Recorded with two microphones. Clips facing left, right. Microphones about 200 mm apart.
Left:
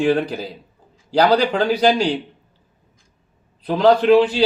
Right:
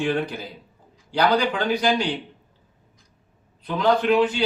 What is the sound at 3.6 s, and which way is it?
Speech, 35° left (ahead or behind).